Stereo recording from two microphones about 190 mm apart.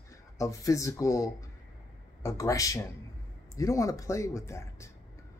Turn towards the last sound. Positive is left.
turn(degrees=15)  # may be behind; listen again after turning